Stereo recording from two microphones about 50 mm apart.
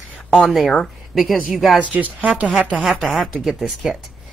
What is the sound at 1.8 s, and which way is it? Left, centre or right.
Speech, right.